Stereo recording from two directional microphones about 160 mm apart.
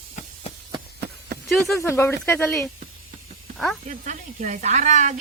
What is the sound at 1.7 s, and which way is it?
Speech, 15° left (ahead or behind).